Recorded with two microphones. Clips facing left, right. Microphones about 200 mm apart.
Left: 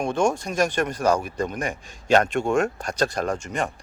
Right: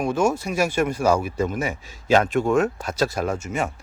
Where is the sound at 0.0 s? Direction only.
5° right (ahead or behind).